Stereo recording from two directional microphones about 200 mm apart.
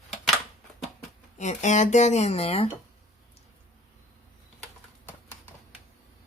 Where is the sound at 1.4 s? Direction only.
35° left (ahead or behind).